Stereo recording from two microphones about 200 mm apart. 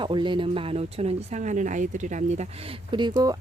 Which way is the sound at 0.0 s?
25° right (ahead or behind).